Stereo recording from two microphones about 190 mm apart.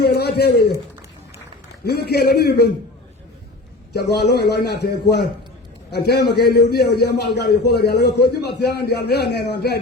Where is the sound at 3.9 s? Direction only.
60° left (ahead or behind).